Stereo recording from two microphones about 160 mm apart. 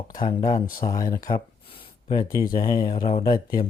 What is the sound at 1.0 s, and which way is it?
Speech, 20° left (ahead or behind).